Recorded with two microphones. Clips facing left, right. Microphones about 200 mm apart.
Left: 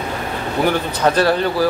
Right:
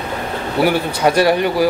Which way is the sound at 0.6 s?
10° right (ahead or behind).